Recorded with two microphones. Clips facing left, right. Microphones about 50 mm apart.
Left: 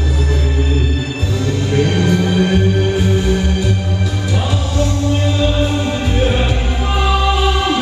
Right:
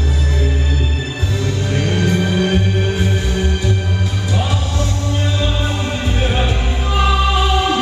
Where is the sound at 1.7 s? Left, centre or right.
Left.